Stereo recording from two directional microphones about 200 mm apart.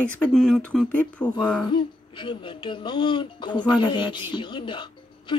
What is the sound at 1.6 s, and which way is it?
Speech, 25° left (ahead or behind).